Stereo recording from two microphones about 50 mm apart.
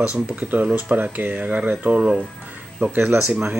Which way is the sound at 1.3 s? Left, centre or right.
Right.